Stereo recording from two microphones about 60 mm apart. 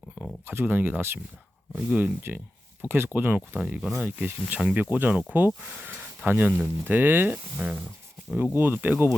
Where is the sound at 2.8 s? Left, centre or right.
Right.